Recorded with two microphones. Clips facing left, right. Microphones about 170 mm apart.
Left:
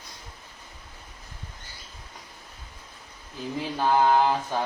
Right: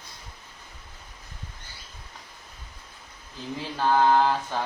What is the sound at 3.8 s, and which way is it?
Mantra, 15° left (ahead or behind).